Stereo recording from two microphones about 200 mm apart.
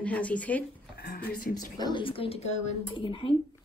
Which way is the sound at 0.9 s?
50° left (ahead or behind).